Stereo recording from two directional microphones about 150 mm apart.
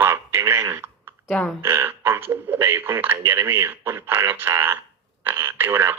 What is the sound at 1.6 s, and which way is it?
Speech, 15° right (ahead or behind).